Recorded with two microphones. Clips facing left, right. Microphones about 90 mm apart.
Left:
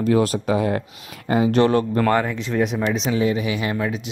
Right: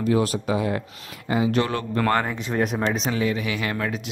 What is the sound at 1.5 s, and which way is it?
Speech, 30° left (ahead or behind).